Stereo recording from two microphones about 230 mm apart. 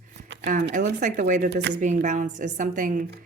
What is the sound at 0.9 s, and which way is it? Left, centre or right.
Speech, right.